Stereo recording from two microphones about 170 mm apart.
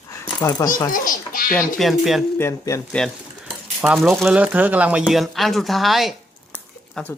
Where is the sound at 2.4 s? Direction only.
15° left (ahead or behind).